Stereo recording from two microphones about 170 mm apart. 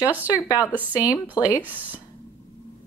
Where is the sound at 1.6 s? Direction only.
10° right (ahead or behind).